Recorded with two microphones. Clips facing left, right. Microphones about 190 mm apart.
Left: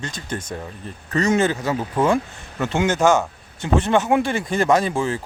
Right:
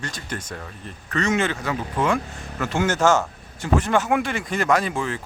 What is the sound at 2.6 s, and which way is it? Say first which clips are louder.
Speech: left 2 dB; 20° left (ahead or behind).